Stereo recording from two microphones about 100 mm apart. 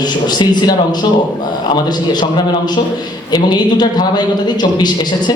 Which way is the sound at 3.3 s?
45° left (ahead or behind).